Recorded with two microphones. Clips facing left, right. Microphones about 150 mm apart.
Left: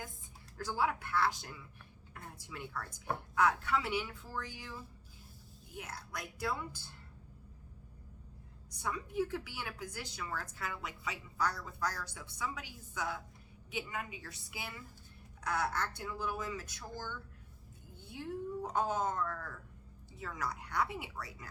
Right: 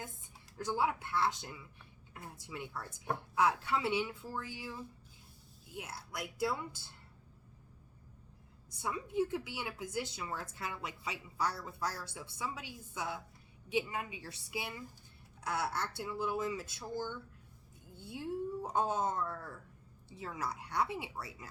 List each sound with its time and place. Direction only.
0.5 s a woman's voice: 20° right (ahead or behind)
6.1 s a woman's voice: 25° right (ahead or behind)
8.8 s a woman's voice: 25° right (ahead or behind)
18.2 s a woman's voice: 25° right (ahead or behind)